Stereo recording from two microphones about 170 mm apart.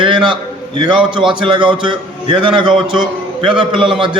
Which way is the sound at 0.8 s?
30° right (ahead or behind).